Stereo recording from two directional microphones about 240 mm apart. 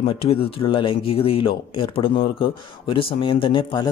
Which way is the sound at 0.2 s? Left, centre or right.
Left.